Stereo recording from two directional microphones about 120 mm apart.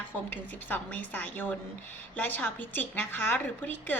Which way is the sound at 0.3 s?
15° left (ahead or behind).